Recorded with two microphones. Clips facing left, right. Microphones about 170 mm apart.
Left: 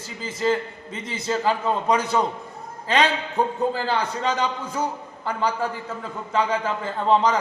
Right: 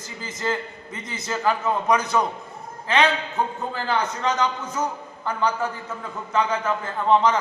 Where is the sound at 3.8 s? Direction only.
30° left (ahead or behind).